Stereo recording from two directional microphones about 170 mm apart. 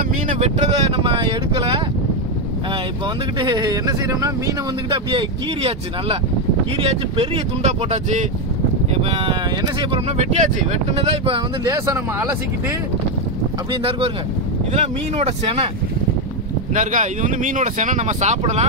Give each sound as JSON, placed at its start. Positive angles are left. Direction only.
{"t": 0.3, "sound": "speech", "side_deg": -40}
{"t": 3.3, "sound": "speech", "side_deg": -25}
{"t": 9.1, "sound": "speech", "side_deg": -30}
{"t": 11.7, "sound": "speech", "side_deg": -20}
{"t": 13.7, "sound": "speech", "side_deg": -30}
{"t": 16.7, "sound": "speech", "side_deg": -50}